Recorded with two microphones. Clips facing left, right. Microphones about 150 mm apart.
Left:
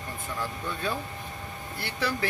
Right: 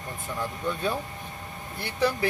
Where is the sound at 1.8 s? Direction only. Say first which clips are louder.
Right 5 dB; 20° right (ahead or behind).